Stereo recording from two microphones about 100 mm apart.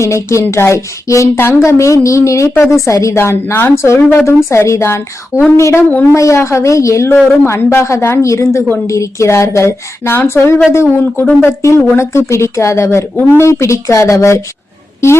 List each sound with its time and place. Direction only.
0.0 s speech: 30° left (ahead or behind)